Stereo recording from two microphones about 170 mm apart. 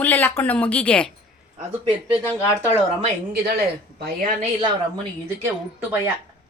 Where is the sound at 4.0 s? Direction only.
50° right (ahead or behind).